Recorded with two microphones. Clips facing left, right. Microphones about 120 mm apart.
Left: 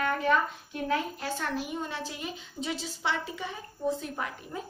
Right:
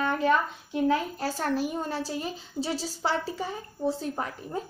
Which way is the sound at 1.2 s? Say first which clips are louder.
Right 5 dB; 40° right (ahead or behind).